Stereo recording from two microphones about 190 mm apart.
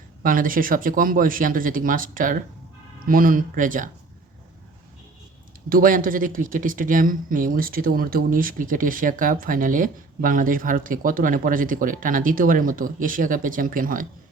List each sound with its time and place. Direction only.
0.2 s speech: 45° right (ahead or behind)
5.6 s speech: 50° right (ahead or behind)